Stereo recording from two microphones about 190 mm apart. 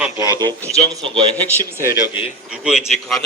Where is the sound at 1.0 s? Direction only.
25° right (ahead or behind).